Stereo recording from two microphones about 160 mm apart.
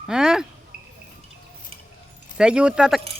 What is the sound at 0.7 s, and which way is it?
Cricket, 75° right (ahead or behind).